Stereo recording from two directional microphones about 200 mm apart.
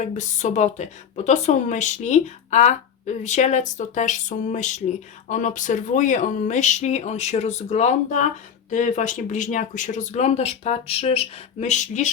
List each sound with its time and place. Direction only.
0.0 s a woman's voice: 35° left (ahead or behind)